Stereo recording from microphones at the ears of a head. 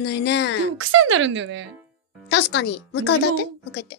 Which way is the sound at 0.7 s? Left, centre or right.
Right.